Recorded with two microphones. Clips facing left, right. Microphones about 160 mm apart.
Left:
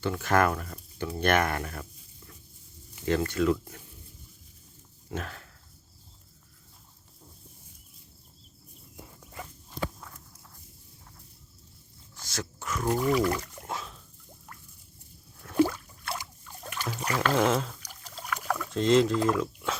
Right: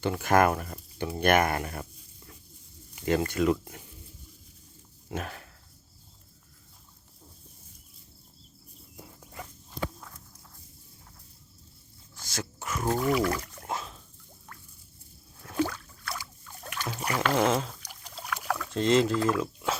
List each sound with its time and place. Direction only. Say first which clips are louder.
0.0 s speech: right 2 dB; 15° right (ahead or behind)
3.1 s speech: even; 15° right (ahead or behind)
5.1 s speech: right 1 dB; 15° right (ahead or behind)
12.2 s dog: even; 5° right (ahead or behind)
13.0 s a sound: left 1 dB; centre (ahead or behind)
15.5 s a sound: left 5 dB; 10° left (ahead or behind)
16.0 s trickle: left 2 dB; 25° left (ahead or behind)
16.6 s boat: even; centre (ahead or behind)
17.1 s speech: even; centre (ahead or behind)
18.0 s rowboat: left 1 dB; centre (ahead or behind)
19.3 s speech: even; 5° right (ahead or behind)